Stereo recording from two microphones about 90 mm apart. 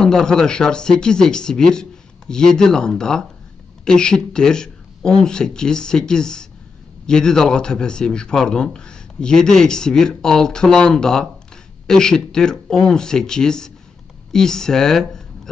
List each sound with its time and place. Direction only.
0.0 s a man's voice: 10° left (ahead or behind)